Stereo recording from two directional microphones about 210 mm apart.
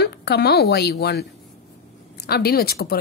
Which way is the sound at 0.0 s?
50° left (ahead or behind).